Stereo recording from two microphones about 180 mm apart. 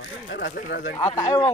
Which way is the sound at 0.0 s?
90° left.